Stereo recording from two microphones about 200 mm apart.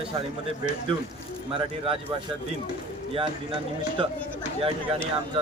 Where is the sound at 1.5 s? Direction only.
25° right (ahead or behind).